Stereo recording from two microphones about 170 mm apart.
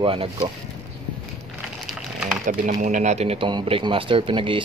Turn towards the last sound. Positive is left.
turn(degrees=-30)  # may be behind; listen again after turning